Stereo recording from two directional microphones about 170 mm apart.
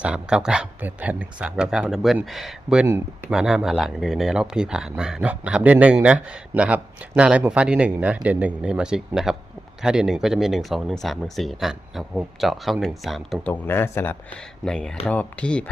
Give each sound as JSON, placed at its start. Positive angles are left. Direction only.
{"t": 0.0, "sound": "speech", "side_deg": -5}
{"t": 2.8, "sound": "speech", "side_deg": -15}
{"t": 3.3, "sound": "speech", "side_deg": -5}
{"t": 13.5, "sound": "speech", "side_deg": 15}